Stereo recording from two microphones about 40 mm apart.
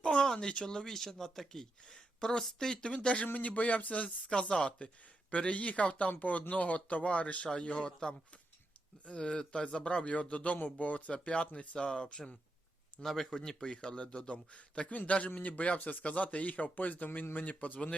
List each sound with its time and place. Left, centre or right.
0.0 s a sound: left
0.3 s speech: left
3.3 s speech: left
7.5 s speech: left
9.0 s speech: left
13.0 s speech: centre; by 17.7 s left